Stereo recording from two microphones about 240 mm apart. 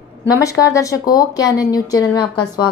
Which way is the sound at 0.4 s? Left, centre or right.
Centre.